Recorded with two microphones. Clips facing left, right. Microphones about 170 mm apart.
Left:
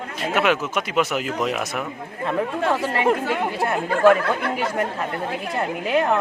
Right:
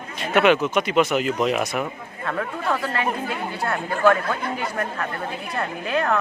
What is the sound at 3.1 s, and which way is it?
Speech, 85° left.